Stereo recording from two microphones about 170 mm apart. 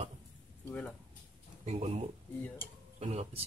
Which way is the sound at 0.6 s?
10° left (ahead or behind).